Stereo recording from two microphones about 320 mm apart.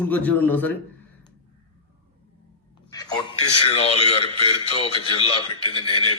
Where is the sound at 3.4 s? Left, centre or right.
Left.